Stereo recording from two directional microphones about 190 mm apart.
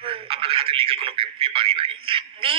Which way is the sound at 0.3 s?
30° right (ahead or behind).